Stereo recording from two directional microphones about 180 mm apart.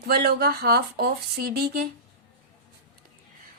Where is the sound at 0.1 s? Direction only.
60° right (ahead or behind).